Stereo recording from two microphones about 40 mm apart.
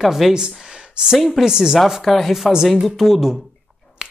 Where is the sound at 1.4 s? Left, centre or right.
Centre.